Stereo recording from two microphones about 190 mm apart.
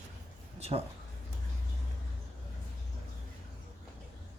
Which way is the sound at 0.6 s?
30° right (ahead or behind).